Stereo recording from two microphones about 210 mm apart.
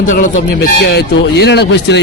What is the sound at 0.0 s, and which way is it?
Speech, 40° left (ahead or behind).